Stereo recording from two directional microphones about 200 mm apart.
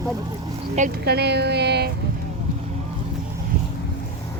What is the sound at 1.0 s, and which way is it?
Speech, 55° right (ahead or behind).